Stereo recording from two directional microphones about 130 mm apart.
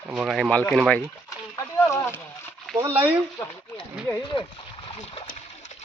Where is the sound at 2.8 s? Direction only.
15° right (ahead or behind).